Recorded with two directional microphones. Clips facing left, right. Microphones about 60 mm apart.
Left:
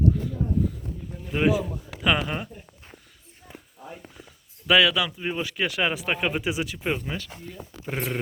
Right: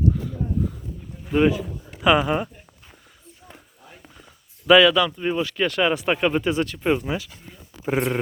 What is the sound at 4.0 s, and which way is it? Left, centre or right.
Speech, centre.